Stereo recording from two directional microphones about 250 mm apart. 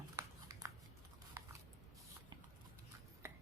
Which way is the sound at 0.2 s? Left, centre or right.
Centre.